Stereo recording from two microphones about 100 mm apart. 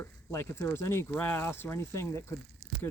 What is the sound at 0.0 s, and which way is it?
Speech, 25° left (ahead or behind).